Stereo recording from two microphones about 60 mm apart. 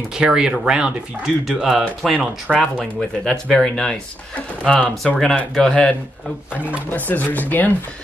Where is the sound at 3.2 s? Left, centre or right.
Centre.